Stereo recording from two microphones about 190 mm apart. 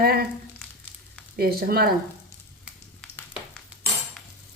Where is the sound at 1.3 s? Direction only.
50° right (ahead or behind).